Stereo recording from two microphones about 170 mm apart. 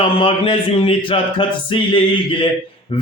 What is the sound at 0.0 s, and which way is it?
A man's voice, 30° left (ahead or behind).